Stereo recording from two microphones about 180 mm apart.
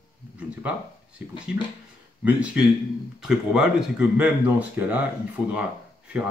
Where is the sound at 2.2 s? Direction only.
5° right (ahead or behind).